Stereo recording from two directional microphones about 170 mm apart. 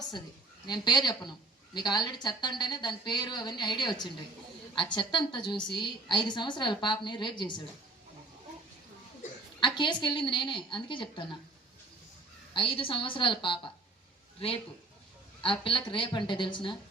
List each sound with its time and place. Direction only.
0.7 s a woman's voice: 25° left (ahead or behind)
9.6 s a woman's voice: 25° left (ahead or behind)
12.5 s a woman's voice: 30° left (ahead or behind)
15.4 s a woman's voice: 30° left (ahead or behind)